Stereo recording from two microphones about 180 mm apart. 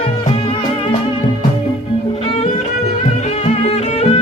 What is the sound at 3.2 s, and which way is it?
Music, 35° left (ahead or behind).